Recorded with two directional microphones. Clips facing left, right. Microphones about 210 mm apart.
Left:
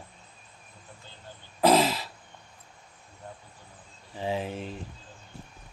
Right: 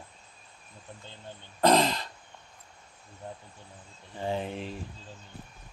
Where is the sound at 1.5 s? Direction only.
5° left (ahead or behind).